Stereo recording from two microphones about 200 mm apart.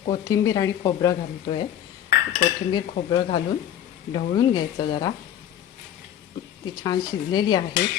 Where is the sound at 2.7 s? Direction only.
20° left (ahead or behind).